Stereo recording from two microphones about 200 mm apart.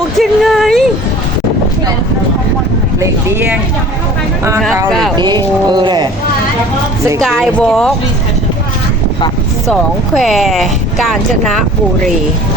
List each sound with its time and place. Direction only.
0.2 s a sound: centre (ahead or behind)
3.0 s speech: 10° right (ahead or behind)
5.1 s speech: 20° right (ahead or behind)
7.2 s speech: centre (ahead or behind)
10.2 s speech: centre (ahead or behind)